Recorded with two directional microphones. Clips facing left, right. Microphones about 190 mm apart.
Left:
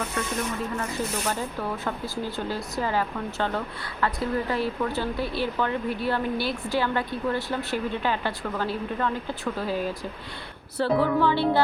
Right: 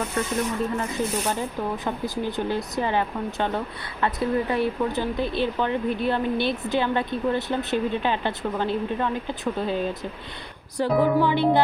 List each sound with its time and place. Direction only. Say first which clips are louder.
1.4 s speech: right 2 dB; 15° right (ahead or behind)